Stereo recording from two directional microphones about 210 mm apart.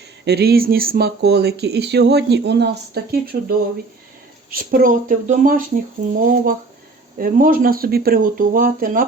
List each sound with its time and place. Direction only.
0.3 s speech: 50° right (ahead or behind)
4.5 s speech: 45° right (ahead or behind)